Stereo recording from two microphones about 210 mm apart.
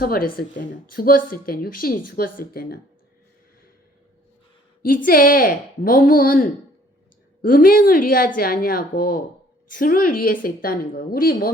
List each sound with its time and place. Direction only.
0.0 s speech: 45° left (ahead or behind)
4.8 s a woman's voice: 40° left (ahead or behind)